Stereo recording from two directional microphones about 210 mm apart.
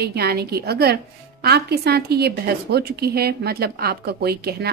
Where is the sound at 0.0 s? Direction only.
50° right (ahead or behind).